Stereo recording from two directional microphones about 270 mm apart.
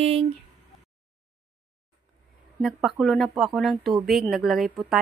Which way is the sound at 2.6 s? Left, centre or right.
Centre.